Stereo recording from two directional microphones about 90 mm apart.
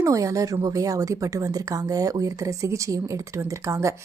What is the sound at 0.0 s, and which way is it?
A woman's voice, 40° right (ahead or behind).